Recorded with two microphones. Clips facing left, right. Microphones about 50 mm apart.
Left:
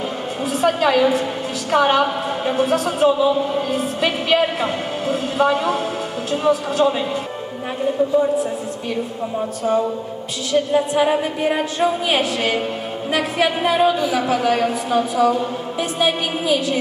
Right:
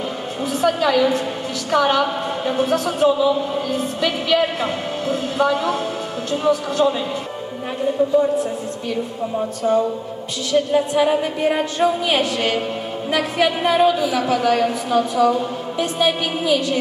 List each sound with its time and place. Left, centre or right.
0.7 s a woman's voice: left
2.5 s a woman's voice: centre
9.6 s a woman's voice: centre